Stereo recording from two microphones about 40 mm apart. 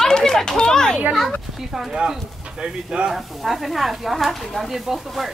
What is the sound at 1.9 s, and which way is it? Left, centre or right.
Speech, centre.